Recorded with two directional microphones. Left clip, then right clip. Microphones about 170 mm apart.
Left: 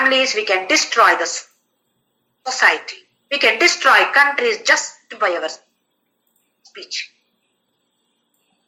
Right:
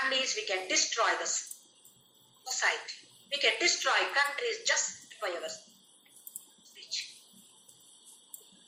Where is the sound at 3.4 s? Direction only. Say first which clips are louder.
Left 13 dB; 55° left (ahead or behind).